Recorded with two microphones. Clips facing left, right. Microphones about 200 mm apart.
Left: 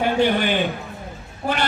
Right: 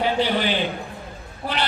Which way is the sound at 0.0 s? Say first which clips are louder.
Left 3 dB; 50° left (ahead or behind).